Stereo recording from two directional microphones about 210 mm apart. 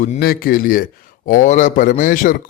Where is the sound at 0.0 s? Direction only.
45° left (ahead or behind).